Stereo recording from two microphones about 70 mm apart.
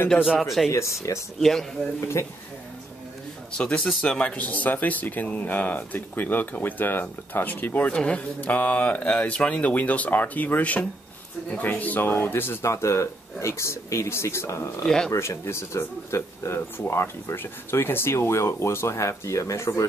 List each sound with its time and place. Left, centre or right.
0.4 s speech: centre
0.7 s speech: left
1.4 s speech: centre
2.0 s speech: left
3.5 s speech: centre; by 19.9 s left